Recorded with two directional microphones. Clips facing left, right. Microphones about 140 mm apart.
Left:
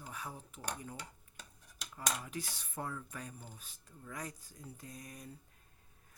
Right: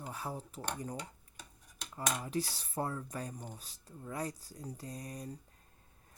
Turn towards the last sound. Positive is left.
turn(degrees=-35)  # may be behind; listen again after turning